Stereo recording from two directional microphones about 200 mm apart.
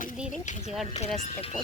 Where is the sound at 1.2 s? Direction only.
35° left (ahead or behind).